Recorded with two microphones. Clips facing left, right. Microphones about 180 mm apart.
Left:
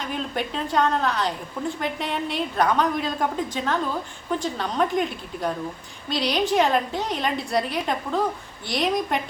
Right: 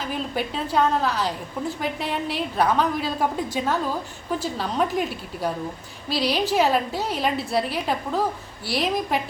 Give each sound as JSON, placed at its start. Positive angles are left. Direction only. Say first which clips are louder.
{"t": 0.0, "sound": "a woman's voice", "louder": "right 1 dB", "side_deg": -5}